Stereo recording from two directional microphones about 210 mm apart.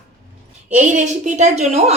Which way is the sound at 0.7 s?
35° right (ahead or behind).